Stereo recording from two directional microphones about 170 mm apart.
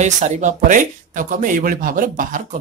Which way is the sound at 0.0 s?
45° right (ahead or behind).